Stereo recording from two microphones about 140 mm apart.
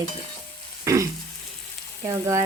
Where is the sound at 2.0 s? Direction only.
25° right (ahead or behind).